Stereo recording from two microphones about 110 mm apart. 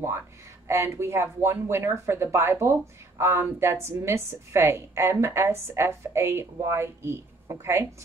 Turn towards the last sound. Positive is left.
turn(degrees=-25)  # may be behind; listen again after turning